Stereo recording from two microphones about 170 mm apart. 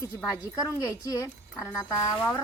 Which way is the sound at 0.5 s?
20° left (ahead or behind).